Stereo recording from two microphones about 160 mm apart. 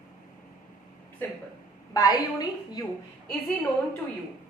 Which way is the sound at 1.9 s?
25° left (ahead or behind).